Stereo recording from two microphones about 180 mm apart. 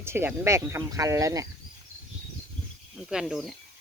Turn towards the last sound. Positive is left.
turn(degrees=0)  # may be behind; listen again after turning